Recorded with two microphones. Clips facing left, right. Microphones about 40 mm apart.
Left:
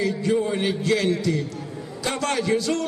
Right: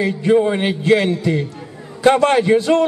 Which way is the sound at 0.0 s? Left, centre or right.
Right.